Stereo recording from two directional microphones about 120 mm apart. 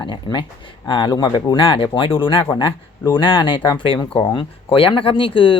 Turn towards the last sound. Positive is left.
turn(degrees=45)  # may be behind; listen again after turning